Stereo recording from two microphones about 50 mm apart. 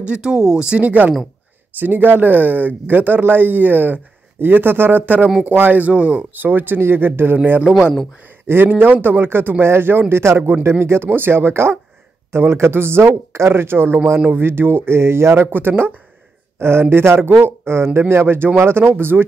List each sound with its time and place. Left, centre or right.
0.0 s speech: centre; by 5.0 s right
5.0 s speech: right
6.3 s speech: right
8.5 s speech: right
13.5 s speech: right
15.5 s speech: right
16.5 s speech: right
17.2 s speech: right
17.6 s speech: right